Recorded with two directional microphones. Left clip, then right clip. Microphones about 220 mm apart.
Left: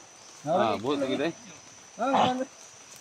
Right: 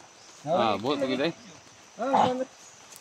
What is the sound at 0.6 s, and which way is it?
Speech, 45° right (ahead or behind).